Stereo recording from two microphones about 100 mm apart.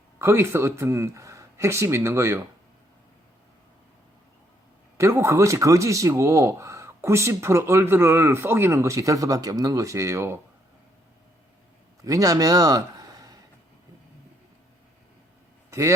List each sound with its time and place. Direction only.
0.2 s speech: 25° right (ahead or behind)
4.9 s speech: 30° right (ahead or behind)
12.0 s a man's voice: 35° right (ahead or behind)